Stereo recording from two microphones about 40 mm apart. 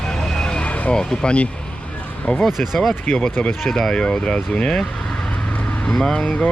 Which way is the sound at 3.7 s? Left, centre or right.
Centre.